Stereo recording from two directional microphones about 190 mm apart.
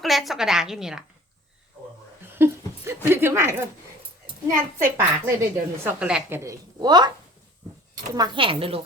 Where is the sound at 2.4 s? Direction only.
15° right (ahead or behind).